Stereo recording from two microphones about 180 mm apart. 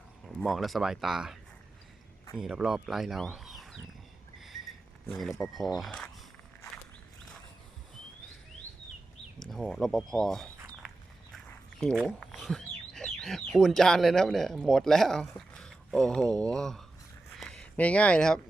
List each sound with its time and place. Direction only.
0.4 s speech: centre (ahead or behind)
2.4 s speech: 5° right (ahead or behind)
4.4 s a sound: centre (ahead or behind)
5.4 s speech: centre (ahead or behind)
9.5 s speech: centre (ahead or behind)
12.0 s speech: centre (ahead or behind)
17.3 s a sound: 5° left (ahead or behind)